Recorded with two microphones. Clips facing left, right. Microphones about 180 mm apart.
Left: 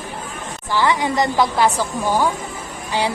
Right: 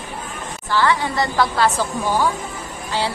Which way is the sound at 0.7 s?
15° left (ahead or behind).